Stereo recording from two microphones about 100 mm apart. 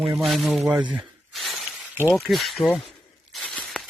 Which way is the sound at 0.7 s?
15° right (ahead or behind).